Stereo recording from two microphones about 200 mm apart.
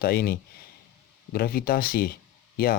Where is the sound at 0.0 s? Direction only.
50° left (ahead or behind).